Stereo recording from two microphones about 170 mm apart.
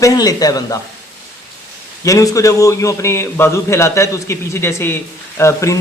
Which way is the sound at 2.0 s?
20° left (ahead or behind).